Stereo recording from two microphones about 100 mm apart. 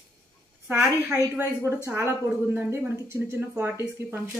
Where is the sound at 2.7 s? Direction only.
25° right (ahead or behind).